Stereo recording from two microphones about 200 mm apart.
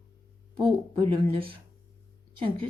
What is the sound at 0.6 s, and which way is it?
A woman's voice, 25° right (ahead or behind).